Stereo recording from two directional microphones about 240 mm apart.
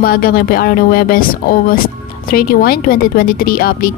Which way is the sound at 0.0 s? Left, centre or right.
Left.